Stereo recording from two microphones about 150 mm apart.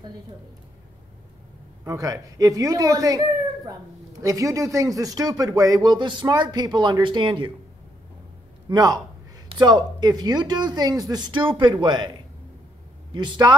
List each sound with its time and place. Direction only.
1.9 s speech: 20° right (ahead or behind)
8.6 s a man's voice: 25° right (ahead or behind)
13.1 s speech: 30° right (ahead or behind)